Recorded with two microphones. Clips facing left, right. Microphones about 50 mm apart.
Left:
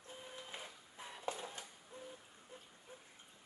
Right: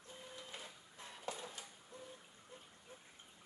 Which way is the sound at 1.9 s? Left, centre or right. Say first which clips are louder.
Left 2 dB; left.